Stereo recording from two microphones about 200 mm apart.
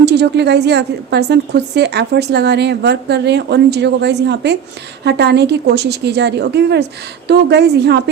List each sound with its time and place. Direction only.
0.0 s a woman's voice: 55° right (ahead or behind)